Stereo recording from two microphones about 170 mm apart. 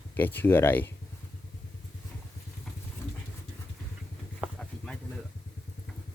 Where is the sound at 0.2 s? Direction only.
10° left (ahead or behind).